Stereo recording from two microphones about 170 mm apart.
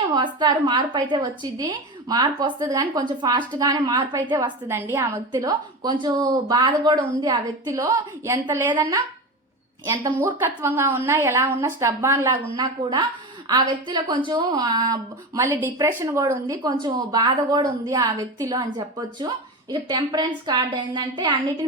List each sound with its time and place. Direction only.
0.3 s a woman's voice: 25° right (ahead or behind)
4.7 s a woman's voice: 15° right (ahead or behind)
9.8 s a woman's voice: 20° right (ahead or behind)
12.8 s a woman's voice: 30° right (ahead or behind)